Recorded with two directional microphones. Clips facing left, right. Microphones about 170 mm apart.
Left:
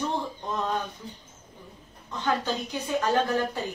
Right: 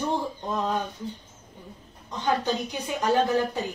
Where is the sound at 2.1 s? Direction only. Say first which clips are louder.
Right 2 dB; 15° right (ahead or behind).